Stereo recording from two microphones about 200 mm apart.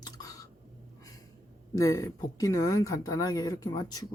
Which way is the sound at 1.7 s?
15° left (ahead or behind).